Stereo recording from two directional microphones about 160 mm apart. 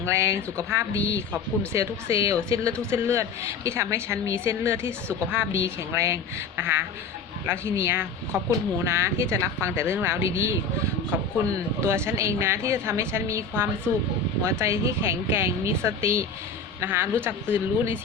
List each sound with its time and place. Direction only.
0.0 s a woman's voice: 15° right (ahead or behind)
11.8 s a woman's voice: 15° right (ahead or behind)